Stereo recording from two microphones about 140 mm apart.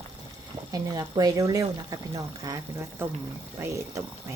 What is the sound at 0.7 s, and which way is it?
Speech, 25° right (ahead or behind).